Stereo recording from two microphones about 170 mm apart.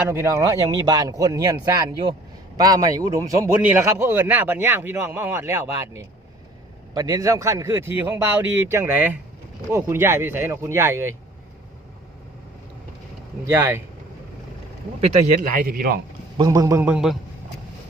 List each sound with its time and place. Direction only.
0.1 s speech: 15° right (ahead or behind)
6.9 s speech: 20° right (ahead or behind)
13.5 s speech: 15° right (ahead or behind)
15.4 s a man's voice: 55° right (ahead or behind)
16.4 s speech: 20° right (ahead or behind)
16.9 s speech: 5° right (ahead or behind)